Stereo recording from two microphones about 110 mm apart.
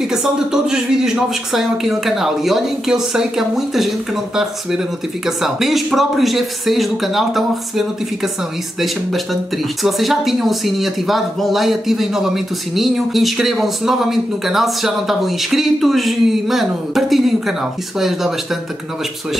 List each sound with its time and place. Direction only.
0.1 s speech: 5° right (ahead or behind)